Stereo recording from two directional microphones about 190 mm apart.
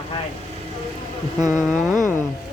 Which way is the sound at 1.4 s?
15° right (ahead or behind).